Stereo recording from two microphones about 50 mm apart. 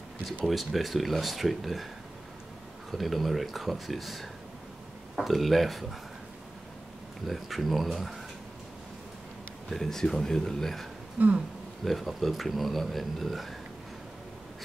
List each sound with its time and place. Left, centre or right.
0.5 s speech: centre
2.9 s speech: centre
7.2 s speech: centre
9.7 s speech: centre
11.1 s a sound: right
11.8 s speech: centre